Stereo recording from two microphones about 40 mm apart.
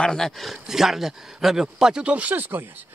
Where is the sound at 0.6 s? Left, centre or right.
Centre.